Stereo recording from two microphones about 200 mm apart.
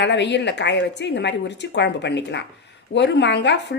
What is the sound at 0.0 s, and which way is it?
A woman's voice, 60° left (ahead or behind).